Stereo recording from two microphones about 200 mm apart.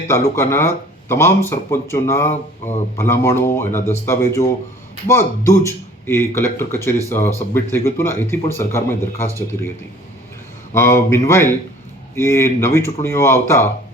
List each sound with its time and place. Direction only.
0.1 s speech: 10° left (ahead or behind)
2.3 s a sound: 35° left (ahead or behind)
3.0 s speech: 10° left (ahead or behind)
10.8 s speech: 15° left (ahead or behind)